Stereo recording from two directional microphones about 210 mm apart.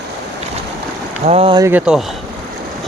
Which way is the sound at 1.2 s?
30° right (ahead or behind).